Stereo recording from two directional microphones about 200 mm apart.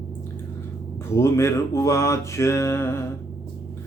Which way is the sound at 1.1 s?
15° left (ahead or behind).